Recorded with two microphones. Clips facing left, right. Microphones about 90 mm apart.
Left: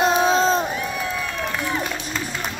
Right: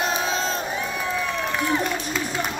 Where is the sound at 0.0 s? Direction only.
35° left (ahead or behind).